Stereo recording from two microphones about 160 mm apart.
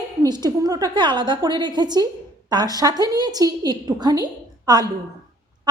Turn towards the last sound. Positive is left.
turn(degrees=-25)  # may be behind; listen again after turning